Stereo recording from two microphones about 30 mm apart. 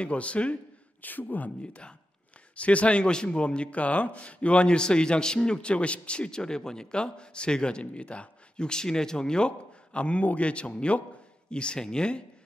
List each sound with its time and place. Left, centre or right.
0.0 s speech: left
1.0 s speech: left
2.5 s speech: left
3.1 s speech: left
4.6 s a man's voice: left
7.8 s speech: left
8.5 s a man's voice: left
9.9 s a man's voice: left